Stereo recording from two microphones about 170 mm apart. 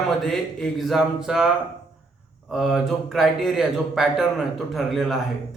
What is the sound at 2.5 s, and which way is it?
A man's voice, centre (ahead or behind).